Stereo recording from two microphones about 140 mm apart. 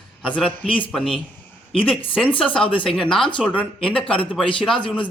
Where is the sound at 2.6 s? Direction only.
40° left (ahead or behind).